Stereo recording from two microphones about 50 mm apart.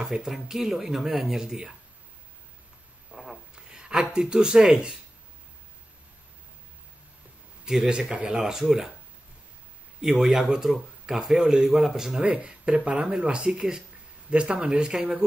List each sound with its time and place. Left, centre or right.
0.0 s speech: centre
3.1 s a sound: centre
3.5 s speech: centre
7.6 s speech: centre
8.4 s speech: centre
10.1 s speech: centre
12.3 s speech: right